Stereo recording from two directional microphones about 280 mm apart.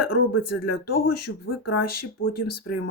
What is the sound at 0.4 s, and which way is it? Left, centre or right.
Speech, left.